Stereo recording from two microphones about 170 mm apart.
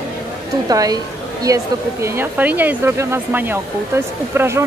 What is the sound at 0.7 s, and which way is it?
A woman's voice, 20° right (ahead or behind).